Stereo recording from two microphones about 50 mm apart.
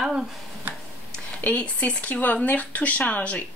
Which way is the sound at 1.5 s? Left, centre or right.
Left.